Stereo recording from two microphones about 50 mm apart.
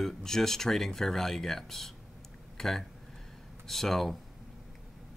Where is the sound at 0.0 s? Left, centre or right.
Centre.